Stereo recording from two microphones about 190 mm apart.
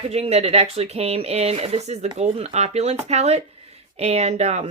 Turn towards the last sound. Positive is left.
turn(degrees=-35)  # may be behind; listen again after turning